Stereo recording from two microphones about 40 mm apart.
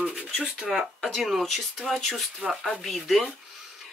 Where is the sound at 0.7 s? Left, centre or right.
Centre.